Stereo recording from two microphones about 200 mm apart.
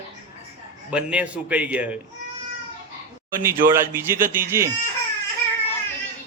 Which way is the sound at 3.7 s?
10° right (ahead or behind).